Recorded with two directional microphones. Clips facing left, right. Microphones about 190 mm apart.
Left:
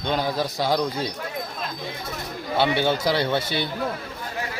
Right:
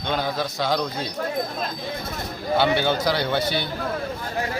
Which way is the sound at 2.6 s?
Centre (ahead or behind).